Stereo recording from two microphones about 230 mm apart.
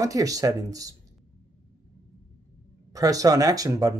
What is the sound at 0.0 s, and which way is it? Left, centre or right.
Speech, centre.